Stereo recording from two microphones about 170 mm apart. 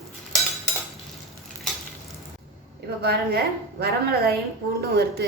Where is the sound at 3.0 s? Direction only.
70° right (ahead or behind).